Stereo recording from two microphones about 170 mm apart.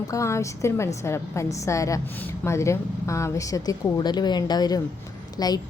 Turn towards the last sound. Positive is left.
turn(degrees=25)  # may be behind; listen again after turning